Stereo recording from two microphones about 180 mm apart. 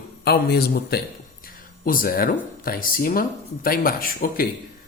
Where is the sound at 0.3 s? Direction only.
60° left (ahead or behind).